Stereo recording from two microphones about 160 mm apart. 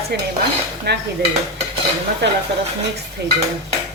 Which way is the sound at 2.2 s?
90° right.